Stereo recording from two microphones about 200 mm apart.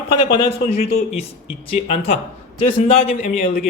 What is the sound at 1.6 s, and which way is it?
Speech, 30° left (ahead or behind).